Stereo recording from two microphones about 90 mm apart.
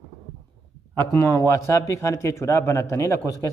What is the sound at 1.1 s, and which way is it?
Speech, 35° left (ahead or behind).